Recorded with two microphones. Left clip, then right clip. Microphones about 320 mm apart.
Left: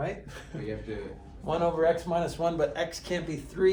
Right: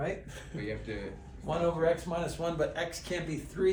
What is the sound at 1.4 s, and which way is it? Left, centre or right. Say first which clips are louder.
Speech: left 4 dB; left.